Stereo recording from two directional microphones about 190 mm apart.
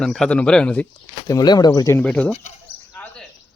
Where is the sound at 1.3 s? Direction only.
20° left (ahead or behind).